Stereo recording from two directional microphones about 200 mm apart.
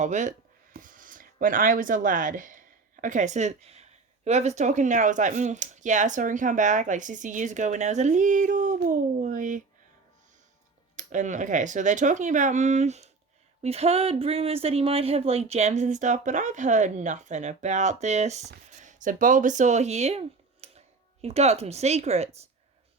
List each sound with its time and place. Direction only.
0.0 s speech: 40° right (ahead or behind)
10.9 s speech: 40° right (ahead or behind)